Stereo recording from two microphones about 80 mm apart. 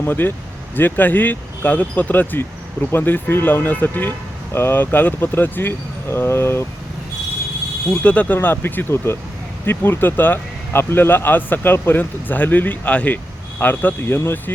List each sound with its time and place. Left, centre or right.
0.0 s speech: left
8.0 s speech: centre